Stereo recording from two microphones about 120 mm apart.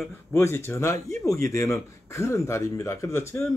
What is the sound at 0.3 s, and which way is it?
Speech, 20° left (ahead or behind).